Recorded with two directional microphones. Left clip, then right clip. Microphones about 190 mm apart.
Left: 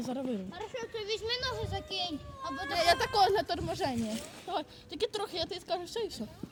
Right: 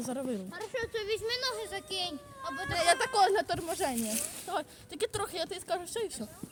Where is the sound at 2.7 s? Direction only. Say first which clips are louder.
Even; 10° right (ahead or behind).